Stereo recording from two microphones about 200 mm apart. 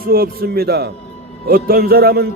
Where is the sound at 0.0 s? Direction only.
50° right (ahead or behind).